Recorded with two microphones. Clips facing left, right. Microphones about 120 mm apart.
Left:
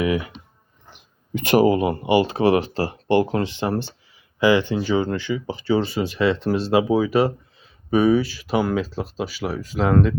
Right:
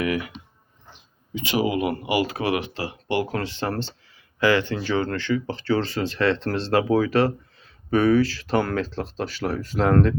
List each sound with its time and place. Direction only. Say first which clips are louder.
0.0 s speech: left 3 dB; 25° left (ahead or behind)
1.3 s speech: left 7 dB; 55° left (ahead or behind); by 10.2 s 5° left (ahead or behind)